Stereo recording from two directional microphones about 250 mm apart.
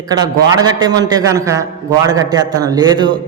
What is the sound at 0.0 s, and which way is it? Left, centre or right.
A man's voice, centre.